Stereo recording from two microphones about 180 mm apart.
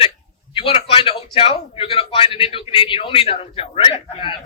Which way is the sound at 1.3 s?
30° left (ahead or behind).